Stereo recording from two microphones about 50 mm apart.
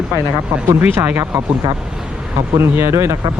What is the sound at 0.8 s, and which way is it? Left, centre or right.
Speech, right.